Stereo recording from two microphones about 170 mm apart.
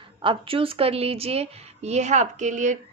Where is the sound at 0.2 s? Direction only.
30° right (ahead or behind).